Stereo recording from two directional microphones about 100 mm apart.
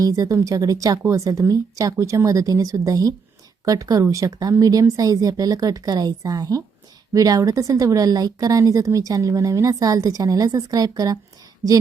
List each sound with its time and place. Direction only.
0.0 s speech: 35° right (ahead or behind)